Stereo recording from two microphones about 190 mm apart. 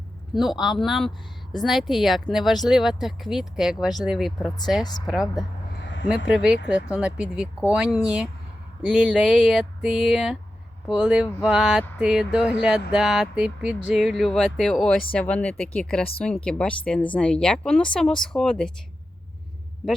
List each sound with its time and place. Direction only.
0.3 s speech: centre (ahead or behind)
4.8 s a woman's voice: 20° left (ahead or behind)
5.0 s speech: centre (ahead or behind)
5.8 s a sound: 75° left (ahead or behind)
6.3 s speech: 5° right (ahead or behind)